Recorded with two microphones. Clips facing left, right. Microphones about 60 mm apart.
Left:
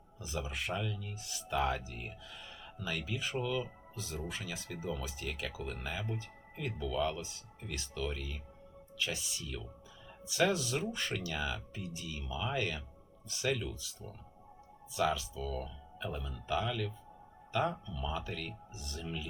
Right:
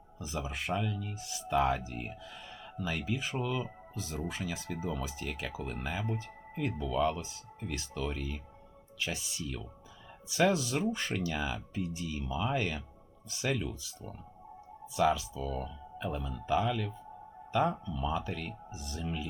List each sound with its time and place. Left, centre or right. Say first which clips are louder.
0.4 s speech: right 5 dB; right
14.9 s speech: right 4 dB; right